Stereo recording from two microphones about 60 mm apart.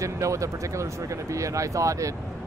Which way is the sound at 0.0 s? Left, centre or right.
Right.